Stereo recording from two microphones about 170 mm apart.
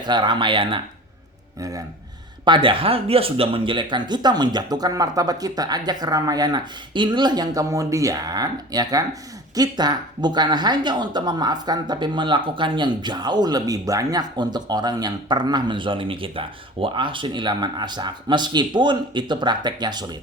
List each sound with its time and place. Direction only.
0.0 s speech: 25° right (ahead or behind)